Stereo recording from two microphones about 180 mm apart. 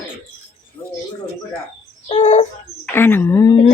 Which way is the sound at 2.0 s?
40° left (ahead or behind).